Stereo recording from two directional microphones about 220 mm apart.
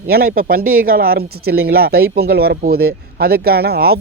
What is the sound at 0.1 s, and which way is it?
Speech, 40° right (ahead or behind).